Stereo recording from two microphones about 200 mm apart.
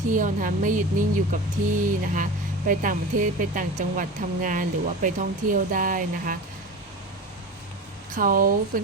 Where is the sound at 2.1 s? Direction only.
40° right (ahead or behind).